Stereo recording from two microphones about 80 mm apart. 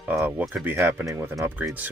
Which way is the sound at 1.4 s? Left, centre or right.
Right.